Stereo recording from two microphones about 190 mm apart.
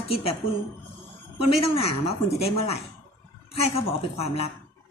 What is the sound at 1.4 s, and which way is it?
Speech, 30° left (ahead or behind).